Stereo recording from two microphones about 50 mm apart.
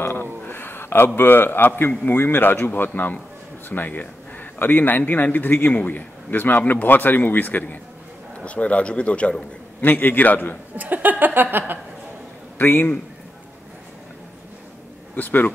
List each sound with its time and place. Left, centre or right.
0.0 s a man's voice: left
8.5 s speech: left
9.8 s speech: left
10.8 s a woman's voice: right
12.5 s speech: left
15.1 s speech: left